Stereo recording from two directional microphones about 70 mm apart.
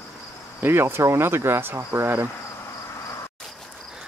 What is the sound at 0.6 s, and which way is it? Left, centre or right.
Speech, right.